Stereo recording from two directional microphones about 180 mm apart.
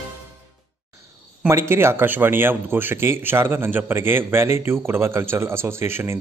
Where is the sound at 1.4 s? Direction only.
15° right (ahead or behind).